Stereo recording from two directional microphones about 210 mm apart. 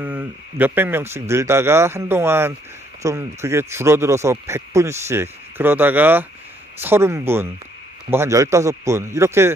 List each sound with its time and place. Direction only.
0.0 s speech: 10° right (ahead or behind)